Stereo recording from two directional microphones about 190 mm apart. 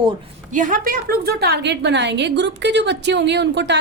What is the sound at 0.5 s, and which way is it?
A woman's voice, 45° right (ahead or behind).